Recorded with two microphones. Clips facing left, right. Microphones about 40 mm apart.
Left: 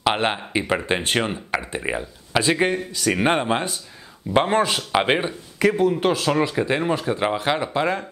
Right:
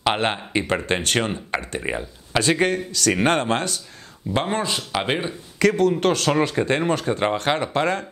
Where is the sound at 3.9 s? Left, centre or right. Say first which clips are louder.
Right 1 dB; centre.